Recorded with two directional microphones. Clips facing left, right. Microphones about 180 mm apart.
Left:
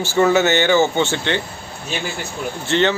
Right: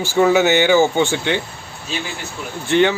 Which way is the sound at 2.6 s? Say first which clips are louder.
Right 3 dB; 10° right (ahead or behind).